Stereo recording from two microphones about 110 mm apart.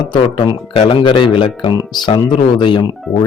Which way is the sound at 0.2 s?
50° left (ahead or behind).